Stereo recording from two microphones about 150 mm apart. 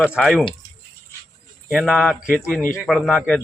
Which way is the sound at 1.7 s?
5° left (ahead or behind).